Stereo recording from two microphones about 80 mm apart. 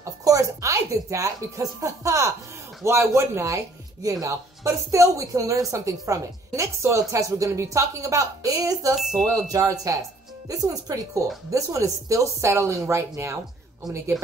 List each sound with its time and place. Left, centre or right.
0.0 s a woman's voice: right
8.9 s speech: centre
9.3 s a woman's voice: right
14.1 s speech: centre